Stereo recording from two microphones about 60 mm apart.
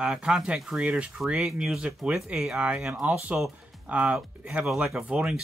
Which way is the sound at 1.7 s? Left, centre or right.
Centre.